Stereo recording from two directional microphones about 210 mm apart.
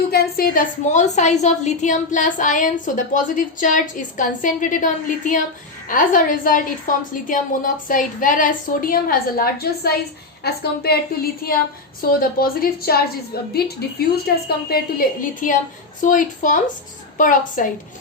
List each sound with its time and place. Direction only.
0.1 s a woman's voice: 45° left (ahead or behind)